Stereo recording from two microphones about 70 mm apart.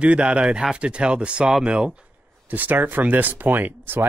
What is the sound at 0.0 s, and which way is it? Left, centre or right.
Speech, centre.